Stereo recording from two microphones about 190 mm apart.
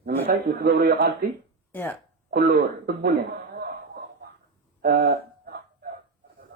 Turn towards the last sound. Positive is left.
turn(degrees=-55)  # may be behind; listen again after turning